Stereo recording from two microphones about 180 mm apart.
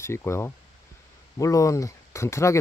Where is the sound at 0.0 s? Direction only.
15° left (ahead or behind).